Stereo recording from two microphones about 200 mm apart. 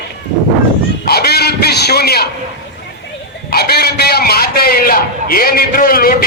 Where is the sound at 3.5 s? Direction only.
50° left (ahead or behind).